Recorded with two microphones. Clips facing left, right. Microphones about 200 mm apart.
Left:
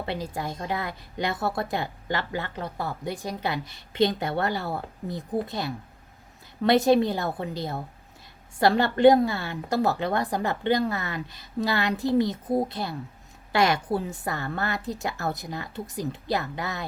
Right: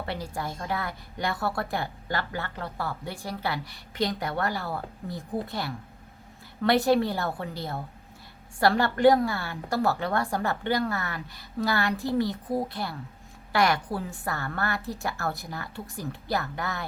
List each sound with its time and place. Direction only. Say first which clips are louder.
0.0 s a woman's voice: left 2 dB; 20° left (ahead or behind)